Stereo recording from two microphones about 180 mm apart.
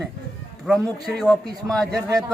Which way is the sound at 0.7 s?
Centre (ahead or behind).